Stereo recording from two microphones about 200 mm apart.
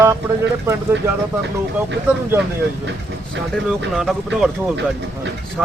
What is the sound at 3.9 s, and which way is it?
Speech, centre (ahead or behind).